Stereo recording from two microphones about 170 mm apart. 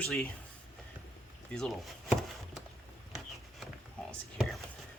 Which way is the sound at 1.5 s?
Centre (ahead or behind).